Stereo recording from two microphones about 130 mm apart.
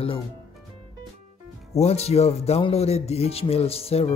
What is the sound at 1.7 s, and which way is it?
Speech, 55° left (ahead or behind).